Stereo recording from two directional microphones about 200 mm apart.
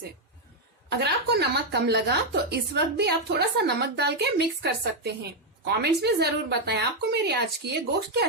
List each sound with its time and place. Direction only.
0.9 s a woman's voice: 55° right (ahead or behind)